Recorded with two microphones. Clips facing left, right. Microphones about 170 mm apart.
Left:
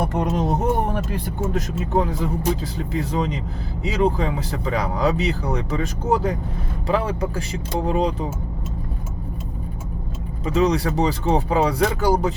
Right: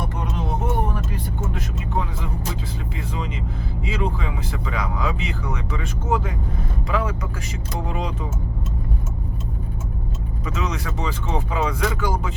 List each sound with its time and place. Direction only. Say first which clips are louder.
0.0 s a sound: left 6 dB; 45° left (ahead or behind)
1.5 s speech: left 8 dB; 40° left (ahead or behind)
10.4 s speech: left 9 dB; 35° left (ahead or behind)